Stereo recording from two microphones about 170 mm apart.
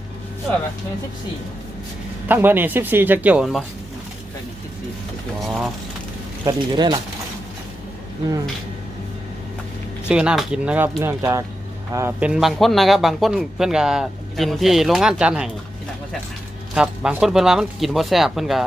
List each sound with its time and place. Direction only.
2.2 s speech: 10° right (ahead or behind)
5.5 s a man's voice: centre (ahead or behind)
6.4 s speech: 25° right (ahead or behind)
10.1 s a man's voice: 5° right (ahead or behind)
16.7 s a man's voice: 5° right (ahead or behind)